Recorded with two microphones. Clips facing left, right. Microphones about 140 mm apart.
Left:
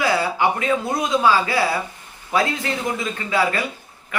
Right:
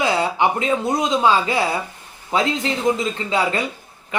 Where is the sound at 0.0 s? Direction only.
20° right (ahead or behind).